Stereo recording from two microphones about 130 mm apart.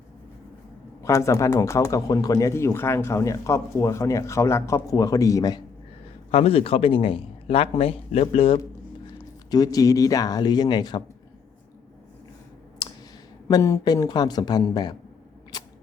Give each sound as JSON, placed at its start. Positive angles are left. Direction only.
{"t": 1.0, "sound": "speech", "side_deg": 20}
{"t": 6.3, "sound": "speech", "side_deg": 50}
{"t": 9.5, "sound": "speech", "side_deg": 30}
{"t": 12.8, "sound": "clicking", "side_deg": 30}
{"t": 13.5, "sound": "speech", "side_deg": 25}
{"t": 15.5, "sound": "a sound", "side_deg": 30}